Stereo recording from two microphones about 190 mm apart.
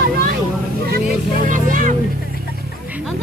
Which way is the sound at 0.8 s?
60° right (ahead or behind).